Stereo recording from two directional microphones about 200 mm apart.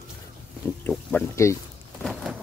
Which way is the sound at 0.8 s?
5° left (ahead or behind).